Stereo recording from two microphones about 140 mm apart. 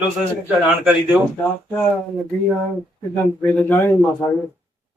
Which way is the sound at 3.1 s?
10° left (ahead or behind).